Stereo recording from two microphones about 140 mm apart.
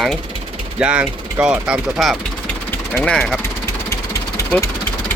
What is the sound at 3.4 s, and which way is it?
Vehicle, 20° left (ahead or behind).